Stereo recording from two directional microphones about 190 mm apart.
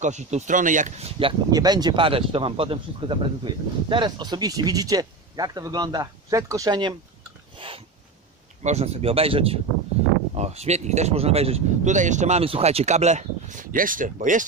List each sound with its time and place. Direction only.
0.0 s speech: 40° right (ahead or behind)
1.5 s speech: 20° right (ahead or behind); by 14.4 s 45° right (ahead or behind)